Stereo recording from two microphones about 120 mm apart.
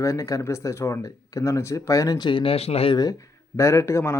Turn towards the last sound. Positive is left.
turn(degrees=25)  # may be behind; listen again after turning